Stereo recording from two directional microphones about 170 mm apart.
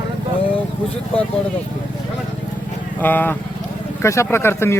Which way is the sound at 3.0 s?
10° left (ahead or behind).